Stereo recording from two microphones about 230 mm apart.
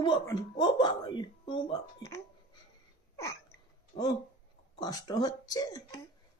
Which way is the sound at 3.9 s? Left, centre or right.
Centre.